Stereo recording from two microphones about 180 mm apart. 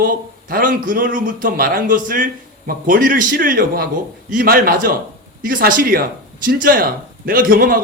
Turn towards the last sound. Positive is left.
turn(degrees=-50)  # may be behind; listen again after turning